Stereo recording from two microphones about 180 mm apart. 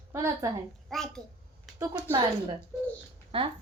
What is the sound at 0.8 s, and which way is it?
Speech, centre (ahead or behind).